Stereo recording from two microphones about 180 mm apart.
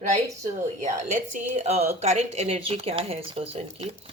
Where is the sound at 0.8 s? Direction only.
45° right (ahead or behind).